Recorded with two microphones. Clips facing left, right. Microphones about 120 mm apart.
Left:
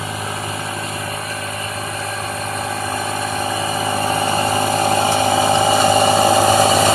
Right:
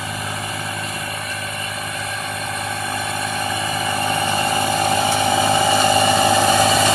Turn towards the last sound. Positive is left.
turn(degrees=35)  # may be behind; listen again after turning